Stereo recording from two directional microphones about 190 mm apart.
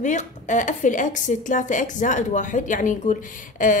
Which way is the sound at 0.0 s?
40° left (ahead or behind).